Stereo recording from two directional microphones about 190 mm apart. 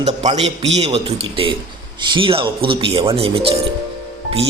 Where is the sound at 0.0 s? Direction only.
35° right (ahead or behind).